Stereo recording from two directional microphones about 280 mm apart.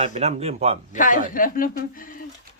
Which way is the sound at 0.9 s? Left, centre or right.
Left.